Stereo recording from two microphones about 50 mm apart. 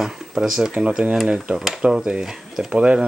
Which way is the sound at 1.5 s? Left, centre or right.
Centre.